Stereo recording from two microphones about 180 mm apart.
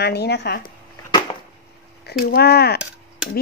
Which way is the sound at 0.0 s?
65° left (ahead or behind).